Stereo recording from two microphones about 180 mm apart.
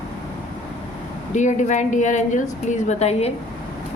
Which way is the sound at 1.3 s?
40° left (ahead or behind).